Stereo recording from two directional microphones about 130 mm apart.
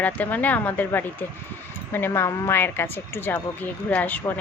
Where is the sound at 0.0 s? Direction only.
10° left (ahead or behind).